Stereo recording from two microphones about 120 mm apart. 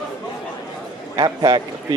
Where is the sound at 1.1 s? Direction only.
35° right (ahead or behind).